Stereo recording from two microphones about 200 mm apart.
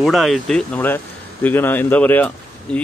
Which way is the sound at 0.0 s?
Centre (ahead or behind).